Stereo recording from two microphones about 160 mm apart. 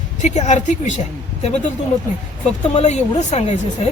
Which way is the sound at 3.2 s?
45° left (ahead or behind).